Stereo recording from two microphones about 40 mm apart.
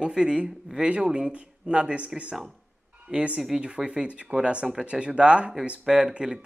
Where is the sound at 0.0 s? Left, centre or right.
Right.